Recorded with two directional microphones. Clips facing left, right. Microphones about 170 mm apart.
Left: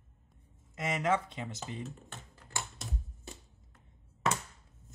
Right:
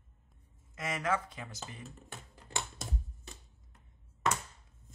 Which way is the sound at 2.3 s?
20° right (ahead or behind).